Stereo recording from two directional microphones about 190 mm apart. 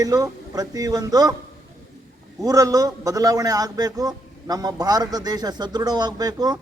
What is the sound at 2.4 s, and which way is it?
A man's voice, 20° right (ahead or behind).